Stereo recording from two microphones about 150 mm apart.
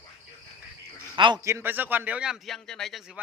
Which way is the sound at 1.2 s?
30° right (ahead or behind).